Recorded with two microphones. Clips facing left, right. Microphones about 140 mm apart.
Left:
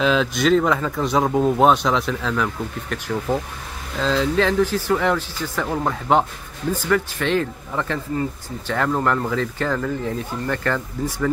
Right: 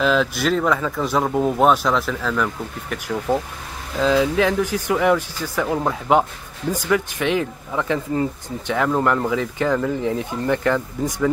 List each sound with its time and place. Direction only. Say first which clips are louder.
0.0 s speech: even; centre (ahead or behind)